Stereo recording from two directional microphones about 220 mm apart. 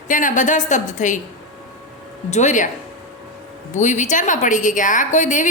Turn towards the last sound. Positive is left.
turn(degrees=35)  # may be behind; listen again after turning